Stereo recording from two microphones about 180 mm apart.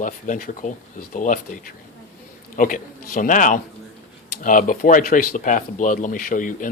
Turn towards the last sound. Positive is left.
turn(degrees=50)  # may be behind; listen again after turning